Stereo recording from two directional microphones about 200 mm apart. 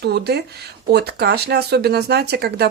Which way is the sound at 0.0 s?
55° right (ahead or behind).